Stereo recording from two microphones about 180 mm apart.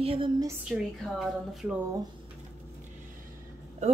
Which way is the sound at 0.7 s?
5° right (ahead or behind).